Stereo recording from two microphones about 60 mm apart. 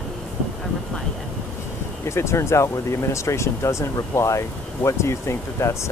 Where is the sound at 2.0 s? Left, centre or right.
Left.